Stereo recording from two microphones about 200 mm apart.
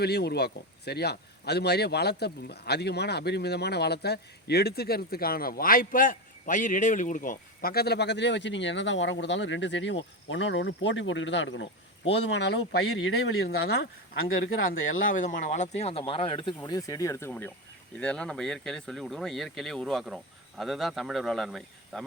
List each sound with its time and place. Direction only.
0.0 s speech: 55° left (ahead or behind); by 13.4 s 80° left
13.4 s speech: 50° left (ahead or behind); by 22.0 s centre (ahead or behind)